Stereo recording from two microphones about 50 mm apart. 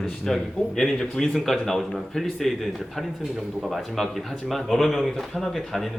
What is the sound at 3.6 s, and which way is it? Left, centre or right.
A man's voice, centre.